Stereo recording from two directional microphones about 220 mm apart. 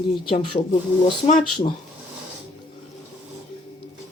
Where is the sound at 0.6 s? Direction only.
30° left (ahead or behind).